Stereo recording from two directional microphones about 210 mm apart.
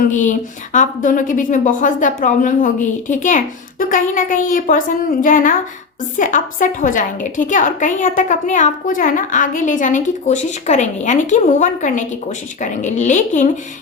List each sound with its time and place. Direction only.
0.0 s a woman's voice: 35° left (ahead or behind)